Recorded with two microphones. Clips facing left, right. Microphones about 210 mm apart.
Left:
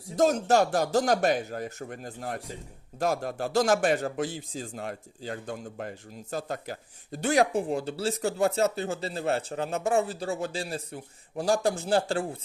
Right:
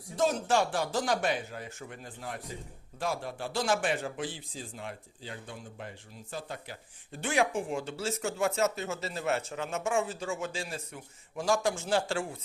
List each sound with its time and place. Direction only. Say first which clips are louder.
0.2 s a man's voice: left 5 dB; 40° left (ahead or behind)